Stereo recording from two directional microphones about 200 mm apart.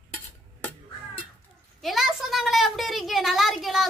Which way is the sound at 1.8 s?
Centre (ahead or behind).